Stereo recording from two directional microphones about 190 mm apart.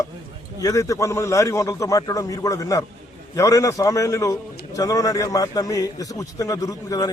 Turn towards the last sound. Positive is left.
turn(degrees=20)  # may be behind; listen again after turning